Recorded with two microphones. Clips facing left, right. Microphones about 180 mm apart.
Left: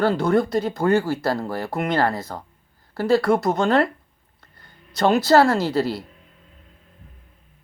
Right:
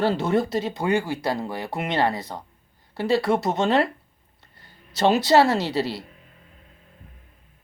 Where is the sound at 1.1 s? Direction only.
15° right (ahead or behind).